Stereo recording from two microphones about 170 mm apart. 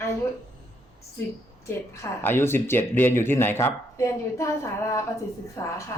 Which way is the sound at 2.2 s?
15° left (ahead or behind).